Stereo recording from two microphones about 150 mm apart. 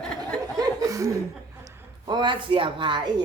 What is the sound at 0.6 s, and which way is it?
Speech, 20° right (ahead or behind).